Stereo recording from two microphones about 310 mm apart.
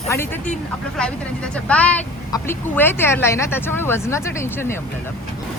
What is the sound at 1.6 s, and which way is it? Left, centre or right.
Speech, centre.